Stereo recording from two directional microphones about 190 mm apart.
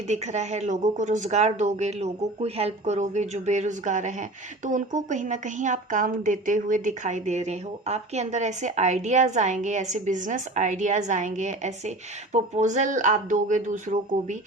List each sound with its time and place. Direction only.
0.1 s a woman's voice: 35° right (ahead or behind)